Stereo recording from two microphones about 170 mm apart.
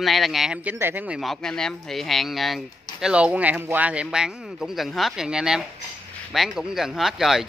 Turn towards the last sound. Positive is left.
turn(degrees=0)  # may be behind; listen again after turning